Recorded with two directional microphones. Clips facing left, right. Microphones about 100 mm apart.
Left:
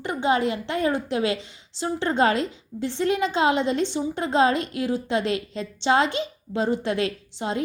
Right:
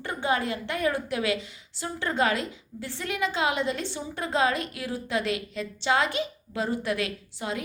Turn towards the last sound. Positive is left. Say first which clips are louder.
# left 4 dB
turn(degrees=30)  # may be behind; listen again after turning